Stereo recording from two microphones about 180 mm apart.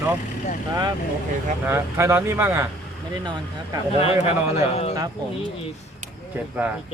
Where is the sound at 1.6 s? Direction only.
15° right (ahead or behind).